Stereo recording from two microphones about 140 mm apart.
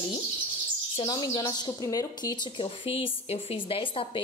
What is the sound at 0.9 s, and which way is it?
Speech, 30° left (ahead or behind).